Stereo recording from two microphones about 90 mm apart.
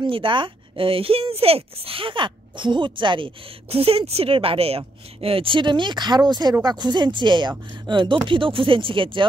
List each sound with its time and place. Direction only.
0.0 s speech: 70° right (ahead or behind)
3.7 s a woman's voice: 90° right; by 9.3 s 70° right (ahead or behind)